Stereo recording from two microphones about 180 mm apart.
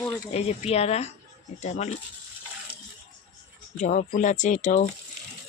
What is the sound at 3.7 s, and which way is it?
Speech, 40° left (ahead or behind).